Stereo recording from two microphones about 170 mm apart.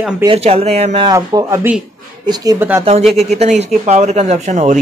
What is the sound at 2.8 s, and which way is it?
Speech, 35° right (ahead or behind).